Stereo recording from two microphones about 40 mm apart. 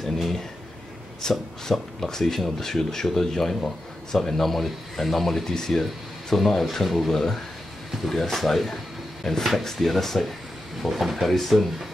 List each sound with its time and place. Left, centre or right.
0.0 s a sound: centre
1.2 s speech: centre
7.1 s speech: centre